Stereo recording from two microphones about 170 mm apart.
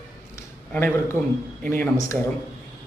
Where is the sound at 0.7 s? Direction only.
10° left (ahead or behind).